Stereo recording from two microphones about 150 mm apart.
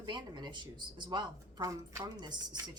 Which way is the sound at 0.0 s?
30° right (ahead or behind).